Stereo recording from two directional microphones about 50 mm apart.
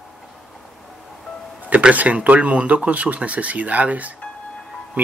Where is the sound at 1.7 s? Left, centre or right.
Right.